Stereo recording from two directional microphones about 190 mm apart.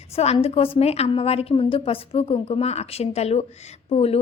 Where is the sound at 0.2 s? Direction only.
35° left (ahead or behind).